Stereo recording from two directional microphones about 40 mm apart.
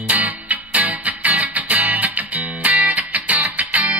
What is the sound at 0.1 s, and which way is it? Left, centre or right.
Music, right.